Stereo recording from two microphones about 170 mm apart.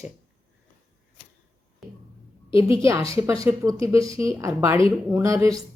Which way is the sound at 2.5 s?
15° right (ahead or behind).